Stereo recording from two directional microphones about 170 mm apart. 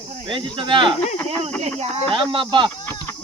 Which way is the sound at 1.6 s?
40° right (ahead or behind).